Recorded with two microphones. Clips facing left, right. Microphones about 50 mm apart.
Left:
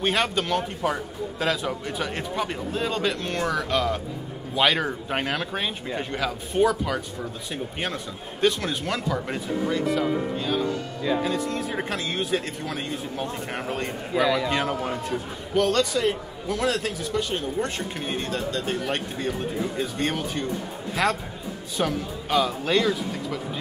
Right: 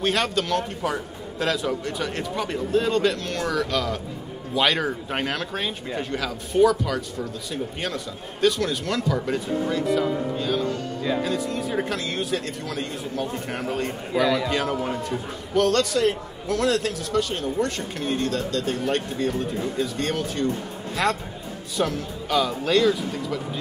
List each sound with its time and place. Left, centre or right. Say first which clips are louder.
0.0 s a man's voice: right 1 dB; centre
11.6 s a man's voice: right 2 dB; centre
14.1 s a man's voice: right 1 dB; centre
20.9 s a man's voice: even; centre